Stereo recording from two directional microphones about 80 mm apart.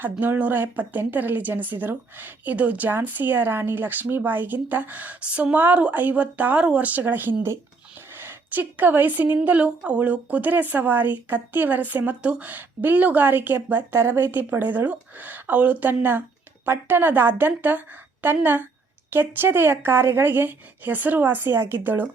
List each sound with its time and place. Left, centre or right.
0.0 s a woman's voice: right